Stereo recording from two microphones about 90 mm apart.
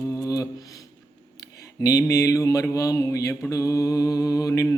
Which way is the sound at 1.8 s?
40° left (ahead or behind).